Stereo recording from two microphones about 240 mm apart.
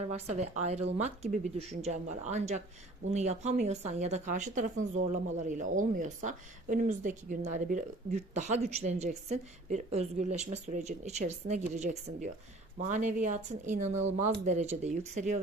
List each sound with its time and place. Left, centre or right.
0.1 s speech: right